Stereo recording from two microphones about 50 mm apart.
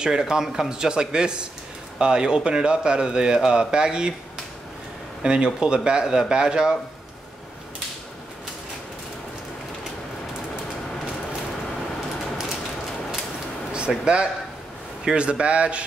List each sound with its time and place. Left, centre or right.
0.0 s speech: centre
5.2 s speech: centre
13.7 s speech: right